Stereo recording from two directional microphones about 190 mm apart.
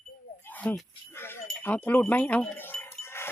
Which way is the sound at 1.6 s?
10° left (ahead or behind).